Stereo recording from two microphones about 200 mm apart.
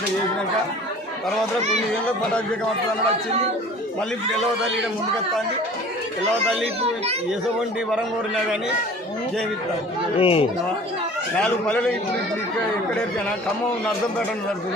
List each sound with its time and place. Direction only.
10.2 s a man's voice: 30° left (ahead or behind)
11.3 s a man's voice: 5° left (ahead or behind)